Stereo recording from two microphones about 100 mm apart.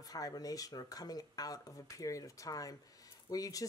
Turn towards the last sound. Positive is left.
turn(degrees=35)  # may be behind; listen again after turning